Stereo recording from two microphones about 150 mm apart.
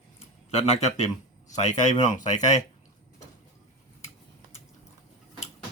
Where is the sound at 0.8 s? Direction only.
50° left (ahead or behind).